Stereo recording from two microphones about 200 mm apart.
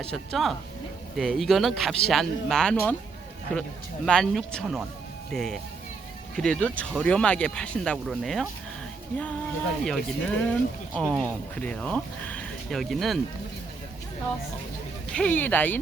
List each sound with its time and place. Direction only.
0.0 s speech: 5° left (ahead or behind)
4.0 s speech: 5° left (ahead or behind)
9.8 s speech: 5° left (ahead or behind)
15.1 s speech: 5° left (ahead or behind)